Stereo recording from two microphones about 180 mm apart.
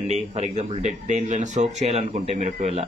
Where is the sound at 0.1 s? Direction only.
40° right (ahead or behind).